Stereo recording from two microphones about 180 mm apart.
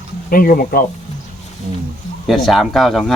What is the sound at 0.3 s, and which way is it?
Speech, 55° left (ahead or behind).